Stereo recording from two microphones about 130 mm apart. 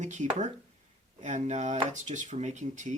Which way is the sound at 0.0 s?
70° right (ahead or behind).